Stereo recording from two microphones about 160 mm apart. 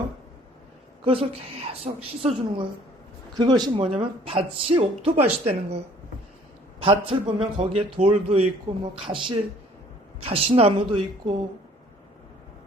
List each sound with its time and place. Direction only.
1.0 s a man's voice: 35° right (ahead or behind)
3.3 s a man's voice: 25° right (ahead or behind)